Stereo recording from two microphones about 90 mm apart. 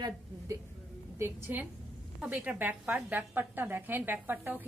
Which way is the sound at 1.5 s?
20° right (ahead or behind).